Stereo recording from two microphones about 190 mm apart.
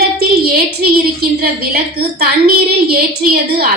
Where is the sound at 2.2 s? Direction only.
55° right (ahead or behind).